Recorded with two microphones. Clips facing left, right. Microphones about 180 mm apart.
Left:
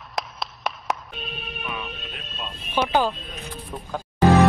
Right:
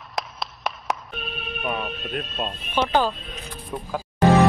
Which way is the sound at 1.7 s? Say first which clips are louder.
Right 8 dB; 45° right (ahead or behind).